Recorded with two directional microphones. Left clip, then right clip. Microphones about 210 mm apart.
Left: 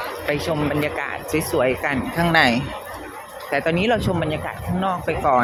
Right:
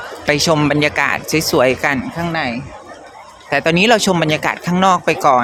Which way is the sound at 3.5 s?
25° right (ahead or behind).